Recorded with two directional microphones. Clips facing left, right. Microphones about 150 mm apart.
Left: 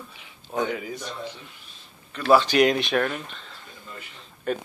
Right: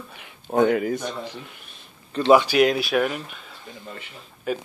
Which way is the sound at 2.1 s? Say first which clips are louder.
Right 4 dB; 30° right (ahead or behind).